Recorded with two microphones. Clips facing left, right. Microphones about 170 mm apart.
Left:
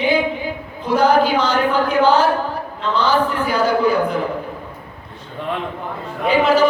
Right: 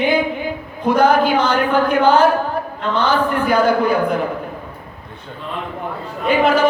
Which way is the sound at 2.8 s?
55° right (ahead or behind).